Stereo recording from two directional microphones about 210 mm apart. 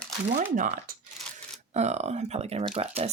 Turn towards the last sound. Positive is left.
turn(degrees=-30)  # may be behind; listen again after turning